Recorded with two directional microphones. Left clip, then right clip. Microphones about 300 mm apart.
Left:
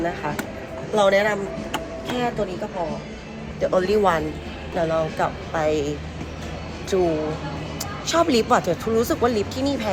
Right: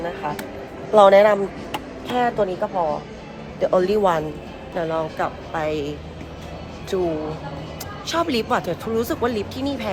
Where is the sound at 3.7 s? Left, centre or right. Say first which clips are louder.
Right 1 dB; centre.